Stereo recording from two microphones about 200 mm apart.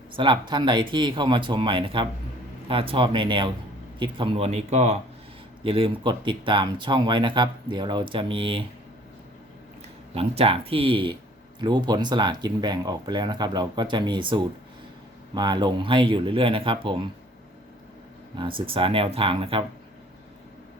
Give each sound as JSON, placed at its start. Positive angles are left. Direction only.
{"t": 0.2, "sound": "speech", "side_deg": -25}
{"t": 10.2, "sound": "speech", "side_deg": -30}
{"t": 18.3, "sound": "speech", "side_deg": -25}